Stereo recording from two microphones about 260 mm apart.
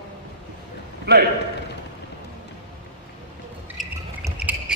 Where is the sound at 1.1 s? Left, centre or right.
Right.